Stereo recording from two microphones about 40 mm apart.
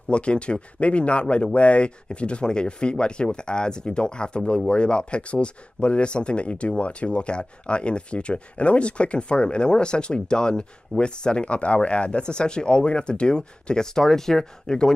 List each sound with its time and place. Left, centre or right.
0.1 s speech: left